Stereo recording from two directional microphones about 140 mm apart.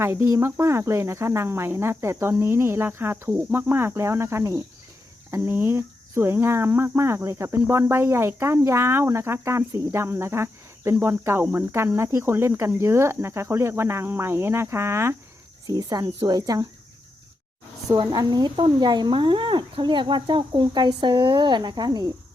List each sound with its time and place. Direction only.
0.0 s speech: 20° right (ahead or behind)
17.8 s speech: 30° right (ahead or behind)